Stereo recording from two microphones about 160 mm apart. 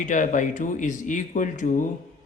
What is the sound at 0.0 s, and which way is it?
Speech, 50° left (ahead or behind).